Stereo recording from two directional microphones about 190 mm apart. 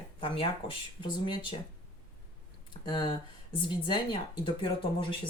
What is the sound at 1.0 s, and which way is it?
Speech, 25° left (ahead or behind).